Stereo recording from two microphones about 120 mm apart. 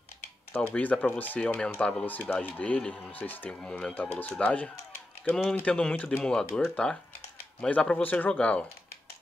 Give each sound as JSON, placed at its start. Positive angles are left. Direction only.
{"t": 0.5, "sound": "speech", "side_deg": 15}